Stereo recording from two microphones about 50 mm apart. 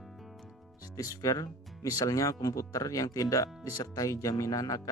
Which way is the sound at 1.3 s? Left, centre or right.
Left.